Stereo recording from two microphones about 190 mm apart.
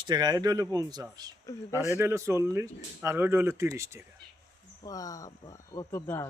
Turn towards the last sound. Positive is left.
turn(degrees=15)  # may be behind; listen again after turning